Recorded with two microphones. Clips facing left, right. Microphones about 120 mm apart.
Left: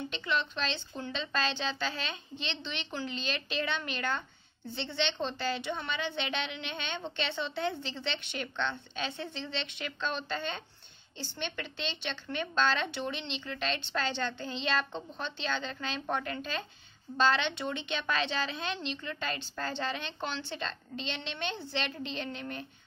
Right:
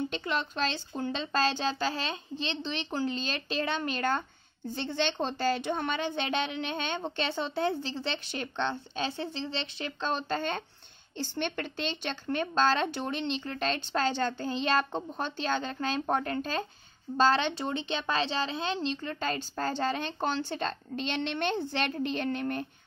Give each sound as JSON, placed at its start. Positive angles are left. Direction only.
{"t": 0.1, "sound": "a woman's voice", "side_deg": -40}